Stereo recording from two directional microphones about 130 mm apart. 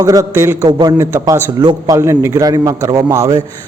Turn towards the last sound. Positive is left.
turn(degrees=-25)  # may be behind; listen again after turning